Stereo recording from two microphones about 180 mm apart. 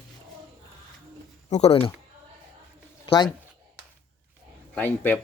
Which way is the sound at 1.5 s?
35° left (ahead or behind).